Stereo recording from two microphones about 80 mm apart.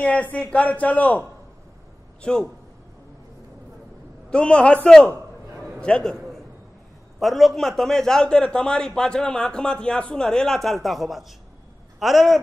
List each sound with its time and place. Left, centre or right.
0.0 s a man's voice: centre
2.2 s a man's voice: centre
4.3 s a man's voice: centre
5.8 s a man's voice: centre
6.1 s a sound: centre
7.2 s a man's voice: centre